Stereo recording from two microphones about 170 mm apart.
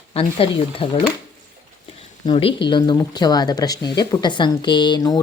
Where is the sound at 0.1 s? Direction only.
35° left (ahead or behind).